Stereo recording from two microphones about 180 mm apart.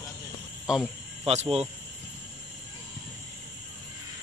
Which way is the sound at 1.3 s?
35° right (ahead or behind).